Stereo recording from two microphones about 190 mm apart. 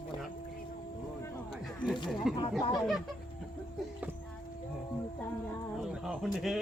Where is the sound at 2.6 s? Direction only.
20° left (ahead or behind).